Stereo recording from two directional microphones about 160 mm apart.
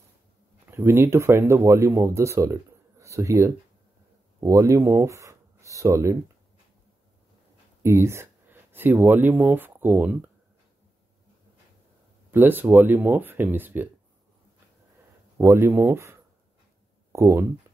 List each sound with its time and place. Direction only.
0.7 s speech: 15° right (ahead or behind)
7.8 s speech: 15° right (ahead or behind)
12.3 s speech: 10° right (ahead or behind)
15.3 s speech: 15° right (ahead or behind)